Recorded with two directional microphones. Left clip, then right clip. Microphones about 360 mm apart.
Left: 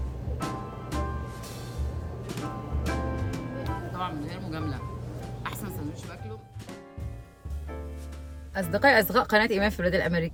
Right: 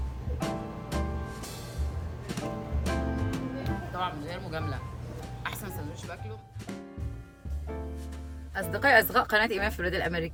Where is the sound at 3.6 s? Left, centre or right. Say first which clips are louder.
Left 1 dB; centre.